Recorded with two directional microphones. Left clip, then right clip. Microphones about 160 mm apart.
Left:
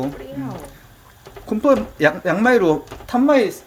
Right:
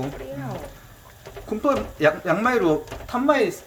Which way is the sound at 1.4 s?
50° left (ahead or behind).